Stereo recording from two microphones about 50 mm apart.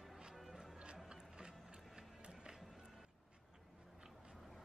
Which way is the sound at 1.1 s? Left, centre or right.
Centre.